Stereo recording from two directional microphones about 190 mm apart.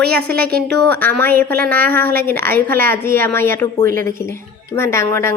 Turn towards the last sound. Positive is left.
turn(degrees=15)  # may be behind; listen again after turning